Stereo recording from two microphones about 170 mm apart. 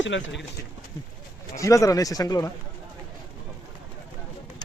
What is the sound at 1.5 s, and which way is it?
Speech, 20° left (ahead or behind).